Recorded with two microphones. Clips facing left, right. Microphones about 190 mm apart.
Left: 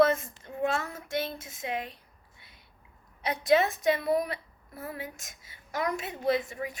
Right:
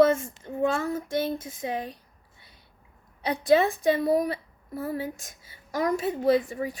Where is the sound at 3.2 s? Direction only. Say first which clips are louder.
Right 3 dB; 30° right (ahead or behind).